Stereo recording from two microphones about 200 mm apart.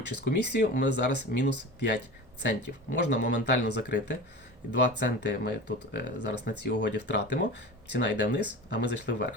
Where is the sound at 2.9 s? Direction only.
60° left (ahead or behind).